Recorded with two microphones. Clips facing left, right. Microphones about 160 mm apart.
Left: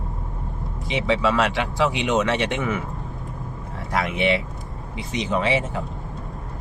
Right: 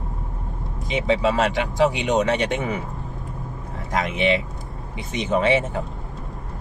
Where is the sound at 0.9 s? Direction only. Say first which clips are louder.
Right 1 dB; 45° right (ahead or behind).